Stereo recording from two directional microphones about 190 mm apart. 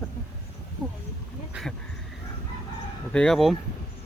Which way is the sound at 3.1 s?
Centre (ahead or behind).